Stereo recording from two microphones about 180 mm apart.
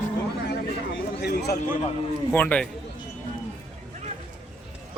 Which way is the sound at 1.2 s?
65° left (ahead or behind).